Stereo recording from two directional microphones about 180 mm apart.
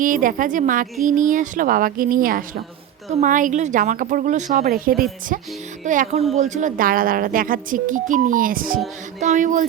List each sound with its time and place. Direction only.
0.0 s speech: 50° right (ahead or behind)
4.6 s speech: 55° right (ahead or behind)